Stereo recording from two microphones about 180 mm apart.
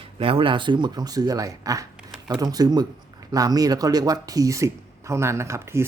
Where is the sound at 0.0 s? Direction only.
30° right (ahead or behind).